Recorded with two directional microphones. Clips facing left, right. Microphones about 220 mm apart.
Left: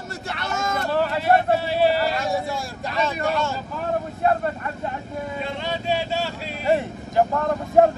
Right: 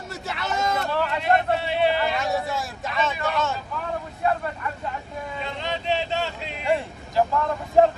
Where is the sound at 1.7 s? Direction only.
40° left (ahead or behind).